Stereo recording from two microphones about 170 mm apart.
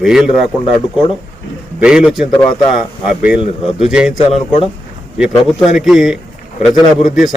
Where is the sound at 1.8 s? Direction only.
5° right (ahead or behind).